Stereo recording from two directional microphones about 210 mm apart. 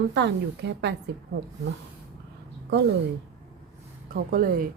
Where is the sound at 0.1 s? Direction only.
55° right (ahead or behind).